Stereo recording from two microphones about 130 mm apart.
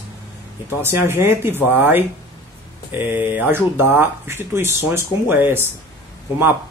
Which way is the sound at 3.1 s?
15° right (ahead or behind).